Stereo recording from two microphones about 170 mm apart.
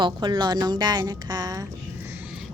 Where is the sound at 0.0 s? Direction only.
25° right (ahead or behind).